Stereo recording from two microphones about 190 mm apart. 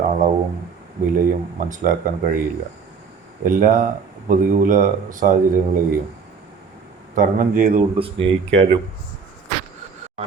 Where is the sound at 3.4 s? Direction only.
45° right (ahead or behind).